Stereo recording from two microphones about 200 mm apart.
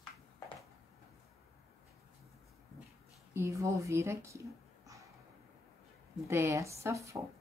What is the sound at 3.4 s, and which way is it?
Speech, 15° right (ahead or behind).